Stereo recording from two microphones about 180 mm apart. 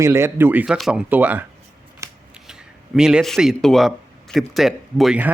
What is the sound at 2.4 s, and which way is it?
Speech, 5° right (ahead or behind).